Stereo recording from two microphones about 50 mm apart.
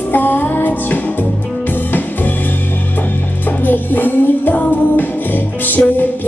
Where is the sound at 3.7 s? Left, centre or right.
Left.